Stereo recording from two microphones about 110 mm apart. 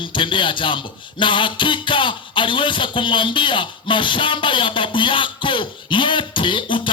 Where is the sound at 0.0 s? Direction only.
50° left (ahead or behind).